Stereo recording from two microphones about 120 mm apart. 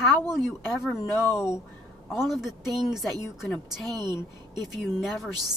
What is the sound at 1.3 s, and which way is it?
Speech, 25° left (ahead or behind).